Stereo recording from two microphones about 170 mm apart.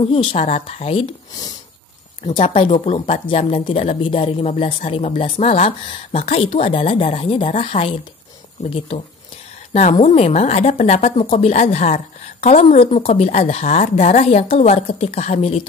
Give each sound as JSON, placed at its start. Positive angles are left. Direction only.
{"t": 0.1, "sound": "a woman's voice", "side_deg": 30}
{"t": 2.2, "sound": "a woman's voice", "side_deg": 35}